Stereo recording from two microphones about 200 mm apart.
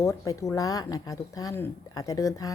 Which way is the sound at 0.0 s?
15° left (ahead or behind).